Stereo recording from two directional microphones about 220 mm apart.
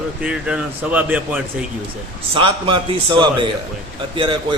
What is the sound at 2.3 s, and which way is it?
A man's voice, 25° right (ahead or behind).